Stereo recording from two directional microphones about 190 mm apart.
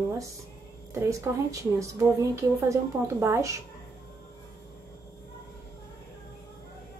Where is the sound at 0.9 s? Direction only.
15° right (ahead or behind).